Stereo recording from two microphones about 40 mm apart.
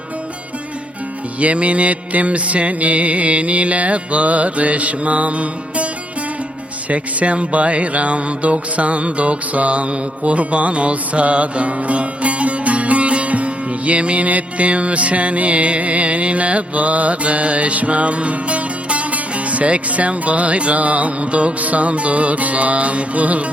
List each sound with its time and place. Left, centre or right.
1.4 s music: right
6.9 s music: right